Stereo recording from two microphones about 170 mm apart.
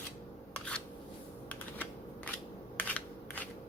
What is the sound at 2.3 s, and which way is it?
Crushing, 5° left (ahead or behind).